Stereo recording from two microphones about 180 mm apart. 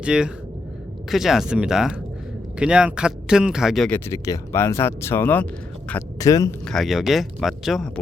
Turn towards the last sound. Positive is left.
turn(degrees=0)  # may be behind; listen again after turning